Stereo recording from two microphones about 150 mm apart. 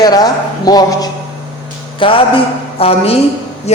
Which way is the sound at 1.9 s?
35° left (ahead or behind).